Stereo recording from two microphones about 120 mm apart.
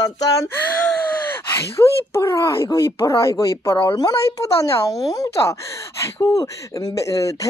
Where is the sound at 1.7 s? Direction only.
25° left (ahead or behind).